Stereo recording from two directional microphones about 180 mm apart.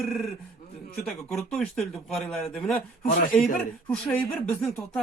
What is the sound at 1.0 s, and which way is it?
Speech, centre (ahead or behind).